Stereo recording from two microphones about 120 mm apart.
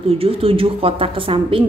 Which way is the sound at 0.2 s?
50° right (ahead or behind).